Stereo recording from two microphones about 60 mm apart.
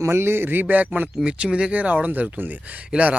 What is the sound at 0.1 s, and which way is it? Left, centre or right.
Speech, right.